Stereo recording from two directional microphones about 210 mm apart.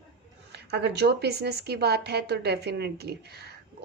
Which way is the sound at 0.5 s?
50° right (ahead or behind).